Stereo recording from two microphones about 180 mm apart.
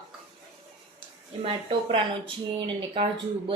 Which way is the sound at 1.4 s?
30° right (ahead or behind).